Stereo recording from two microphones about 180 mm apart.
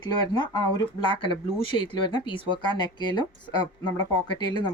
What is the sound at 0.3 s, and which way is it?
A woman's voice, 25° left (ahead or behind).